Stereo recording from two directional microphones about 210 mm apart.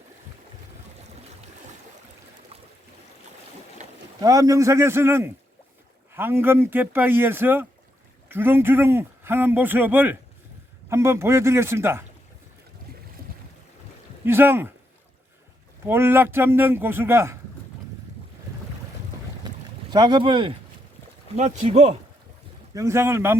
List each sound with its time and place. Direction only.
3.8 s a sound: 35° right (ahead or behind)
4.2 s speech: 15° right (ahead or behind)
13.2 s boat: 45° right (ahead or behind)
14.3 s speech: 10° right (ahead or behind)
15.8 s speech: 10° right (ahead or behind)
19.9 s speech: 20° right (ahead or behind)
22.7 s speech: 15° right (ahead or behind)